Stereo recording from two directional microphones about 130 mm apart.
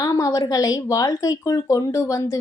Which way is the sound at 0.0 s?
25° left (ahead or behind).